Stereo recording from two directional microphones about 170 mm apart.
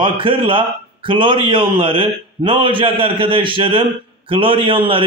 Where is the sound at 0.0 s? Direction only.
30° right (ahead or behind).